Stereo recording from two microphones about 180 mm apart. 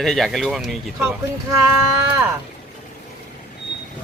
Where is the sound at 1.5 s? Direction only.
15° right (ahead or behind).